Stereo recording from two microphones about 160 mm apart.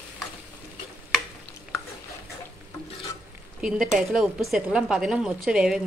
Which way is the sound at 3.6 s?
5° right (ahead or behind).